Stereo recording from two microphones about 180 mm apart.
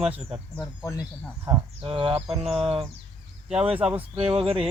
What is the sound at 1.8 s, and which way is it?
Speech, 25° right (ahead or behind).